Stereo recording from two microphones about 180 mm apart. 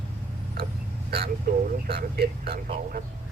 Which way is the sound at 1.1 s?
60° right (ahead or behind).